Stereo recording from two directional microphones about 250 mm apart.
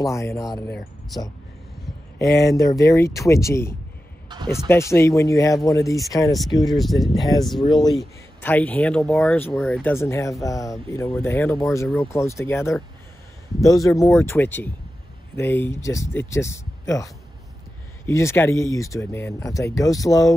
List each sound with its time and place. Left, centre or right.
0.0 s speech: centre
2.1 s speech: centre
6.7 s speech: centre
7.6 s speech: centre
7.9 s speech: centre